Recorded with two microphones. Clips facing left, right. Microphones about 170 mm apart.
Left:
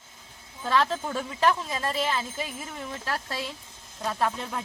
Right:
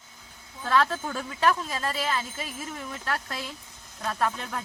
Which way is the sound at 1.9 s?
Centre (ahead or behind).